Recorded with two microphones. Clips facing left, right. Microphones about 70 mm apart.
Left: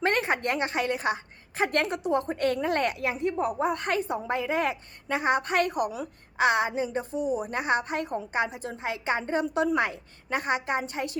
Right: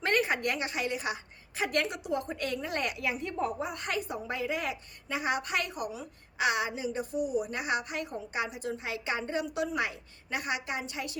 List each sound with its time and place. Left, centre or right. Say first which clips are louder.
0.0 s a woman's voice: left 3 dB; left
3.2 s a woman's voice: left 5 dB; left
3.6 s a woman's voice: left 7 dB; left
6.3 s a woman's voice: left 6 dB; left